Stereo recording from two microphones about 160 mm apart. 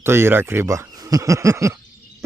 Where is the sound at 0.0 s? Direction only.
15° right (ahead or behind).